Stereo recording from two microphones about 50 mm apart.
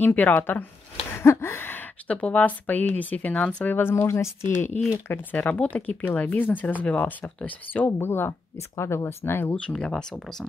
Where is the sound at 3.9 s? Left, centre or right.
Left.